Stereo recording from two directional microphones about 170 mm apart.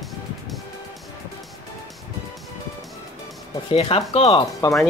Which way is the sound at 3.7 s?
35° left (ahead or behind).